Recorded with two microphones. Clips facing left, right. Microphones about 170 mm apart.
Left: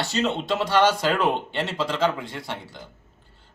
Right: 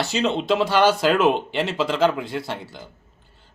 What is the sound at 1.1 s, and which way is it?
Speech, 85° right.